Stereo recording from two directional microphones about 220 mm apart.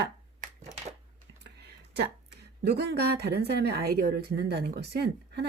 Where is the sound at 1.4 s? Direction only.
50° right (ahead or behind).